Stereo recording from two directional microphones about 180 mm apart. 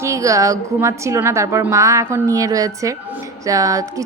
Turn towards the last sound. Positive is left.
turn(degrees=-20)  # may be behind; listen again after turning